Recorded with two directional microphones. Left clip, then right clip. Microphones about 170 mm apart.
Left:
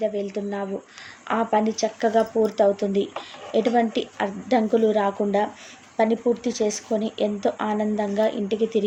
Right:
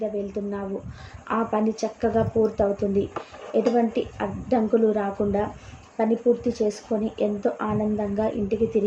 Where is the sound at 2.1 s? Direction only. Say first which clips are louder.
Left 2 dB; 40° left (ahead or behind).